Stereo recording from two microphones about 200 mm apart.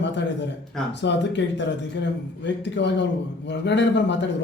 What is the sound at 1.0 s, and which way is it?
Speech, 60° left (ahead or behind).